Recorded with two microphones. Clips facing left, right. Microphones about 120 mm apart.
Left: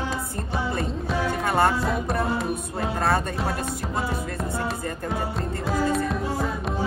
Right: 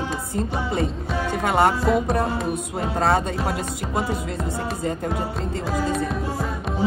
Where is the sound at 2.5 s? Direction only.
25° right (ahead or behind).